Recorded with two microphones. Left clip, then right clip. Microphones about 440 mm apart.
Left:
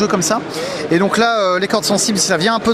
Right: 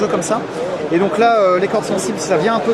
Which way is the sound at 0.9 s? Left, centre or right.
Left.